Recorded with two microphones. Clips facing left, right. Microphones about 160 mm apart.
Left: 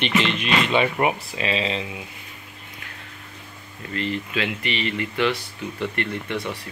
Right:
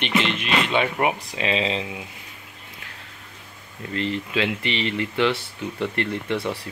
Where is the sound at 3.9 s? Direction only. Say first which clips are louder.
Right 1 dB; 25° right (ahead or behind).